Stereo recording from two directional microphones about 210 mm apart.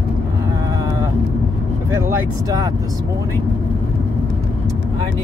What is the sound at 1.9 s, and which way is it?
Speech, 15° right (ahead or behind).